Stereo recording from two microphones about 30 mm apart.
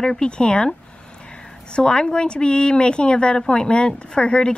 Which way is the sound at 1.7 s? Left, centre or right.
Left.